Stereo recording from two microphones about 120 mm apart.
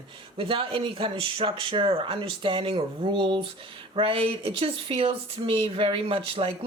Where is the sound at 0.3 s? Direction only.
50° right (ahead or behind).